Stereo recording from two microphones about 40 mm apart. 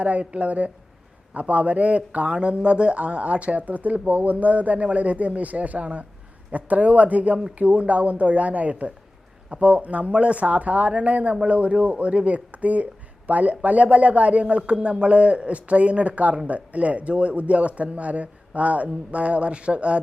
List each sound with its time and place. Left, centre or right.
0.0 s speech: right